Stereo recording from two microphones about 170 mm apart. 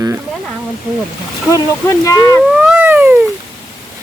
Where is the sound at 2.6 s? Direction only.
10° right (ahead or behind).